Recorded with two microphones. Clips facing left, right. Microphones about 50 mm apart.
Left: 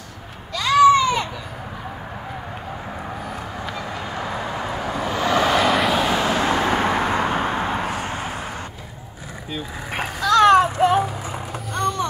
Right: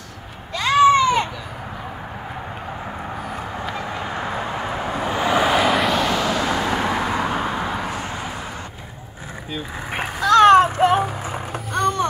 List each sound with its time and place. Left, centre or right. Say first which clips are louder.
0.6 s a sound: even; right
3.7 s vehicle: right 2 dB; right; by 6.2 s centre
6.2 s vehicle: left 1 dB; left
10.2 s music: right 2 dB; right